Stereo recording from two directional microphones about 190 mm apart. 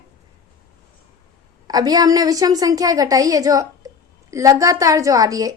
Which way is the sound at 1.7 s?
20° right (ahead or behind).